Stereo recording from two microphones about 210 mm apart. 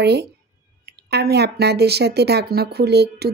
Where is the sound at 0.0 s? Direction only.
50° right (ahead or behind).